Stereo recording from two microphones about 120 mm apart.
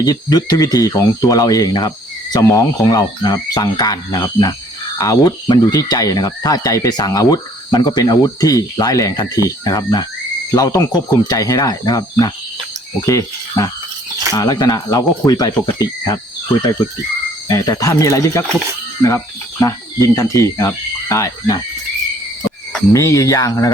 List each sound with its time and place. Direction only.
0.0 s speech: 30° left (ahead or behind)
22.9 s speech: 25° left (ahead or behind)